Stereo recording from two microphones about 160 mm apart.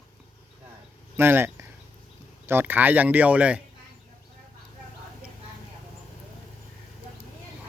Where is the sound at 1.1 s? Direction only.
15° right (ahead or behind).